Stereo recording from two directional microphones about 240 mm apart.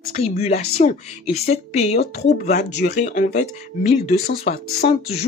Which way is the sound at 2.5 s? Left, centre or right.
Left.